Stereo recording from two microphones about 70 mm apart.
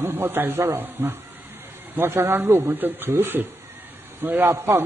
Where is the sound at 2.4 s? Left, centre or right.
Right.